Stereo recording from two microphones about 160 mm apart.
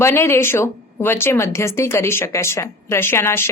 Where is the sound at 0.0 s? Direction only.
15° left (ahead or behind).